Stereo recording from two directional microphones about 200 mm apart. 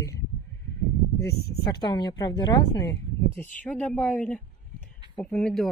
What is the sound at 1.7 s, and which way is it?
A woman's voice, 20° left (ahead or behind).